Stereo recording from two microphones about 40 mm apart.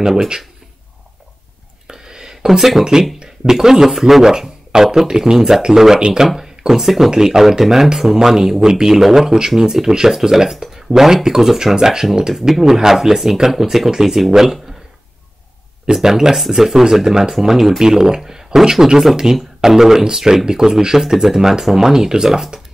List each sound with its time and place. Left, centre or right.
0.0 s speech: centre
1.9 s a sound: centre
2.8 s speech: centre
15.9 s speech: centre